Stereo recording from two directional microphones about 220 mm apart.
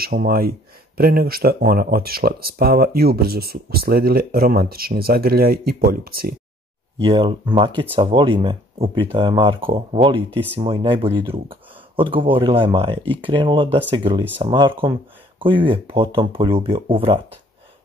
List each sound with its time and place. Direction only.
0.0 s speech: 45° right (ahead or behind)
7.0 s speech: 25° right (ahead or behind)